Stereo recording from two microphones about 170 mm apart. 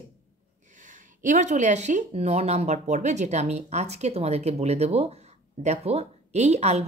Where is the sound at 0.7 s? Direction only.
50° right (ahead or behind).